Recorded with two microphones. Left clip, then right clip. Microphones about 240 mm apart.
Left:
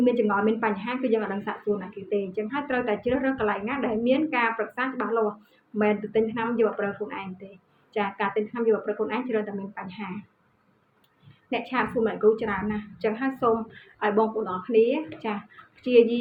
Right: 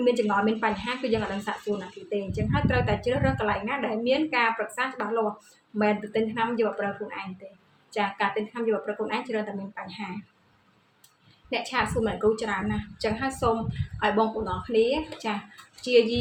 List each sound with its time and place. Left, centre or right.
0.0 s a woman's voice: right
11.5 s a woman's voice: right